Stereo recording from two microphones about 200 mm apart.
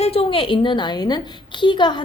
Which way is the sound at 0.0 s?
30° left (ahead or behind).